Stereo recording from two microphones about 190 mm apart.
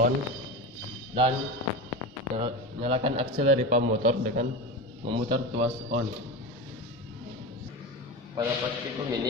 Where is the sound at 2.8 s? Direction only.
30° right (ahead or behind).